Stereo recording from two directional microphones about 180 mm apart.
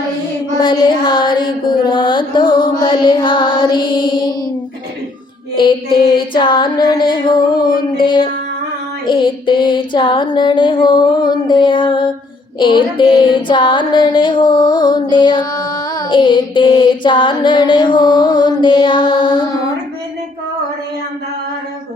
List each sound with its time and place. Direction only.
0.5 s child singing: 25° left (ahead or behind)
6.1 s child singing: 25° left (ahead or behind)